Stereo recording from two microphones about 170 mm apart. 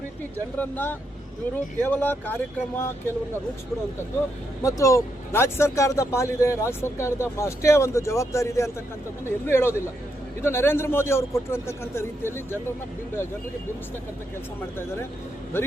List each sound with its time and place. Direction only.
0.3 s speech: 10° left (ahead or behind)
4.6 s speech: 20° left (ahead or behind)
15.5 s speech: 15° left (ahead or behind)